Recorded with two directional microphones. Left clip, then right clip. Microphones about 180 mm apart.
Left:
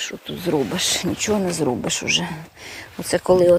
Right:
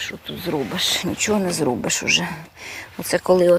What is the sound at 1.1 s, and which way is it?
Speech, centre (ahead or behind).